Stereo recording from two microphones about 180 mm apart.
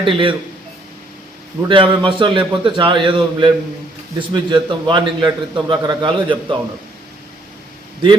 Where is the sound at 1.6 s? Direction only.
30° right (ahead or behind).